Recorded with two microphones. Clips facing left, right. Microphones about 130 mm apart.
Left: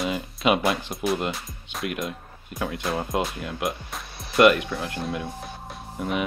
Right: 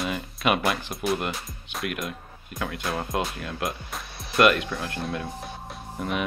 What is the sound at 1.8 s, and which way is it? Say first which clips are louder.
Speech: left 2 dB; 20° left (ahead or behind).